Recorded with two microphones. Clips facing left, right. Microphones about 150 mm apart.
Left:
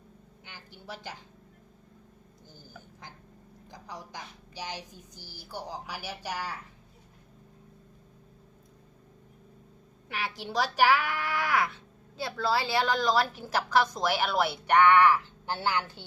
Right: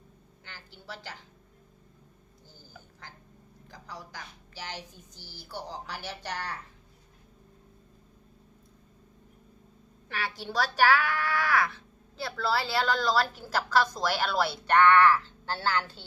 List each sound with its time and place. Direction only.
0.4 s a woman's voice: 15° left (ahead or behind)
3.7 s a child's voice: 20° left (ahead or behind)
10.1 s a child's voice: 15° left (ahead or behind)